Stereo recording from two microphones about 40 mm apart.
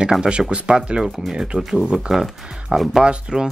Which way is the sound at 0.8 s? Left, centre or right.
Right.